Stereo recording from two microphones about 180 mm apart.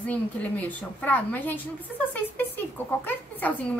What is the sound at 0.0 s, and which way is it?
A woman's voice, 10° left (ahead or behind).